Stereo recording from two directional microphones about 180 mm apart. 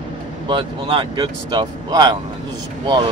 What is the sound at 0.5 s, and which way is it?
Speech, 25° right (ahead or behind).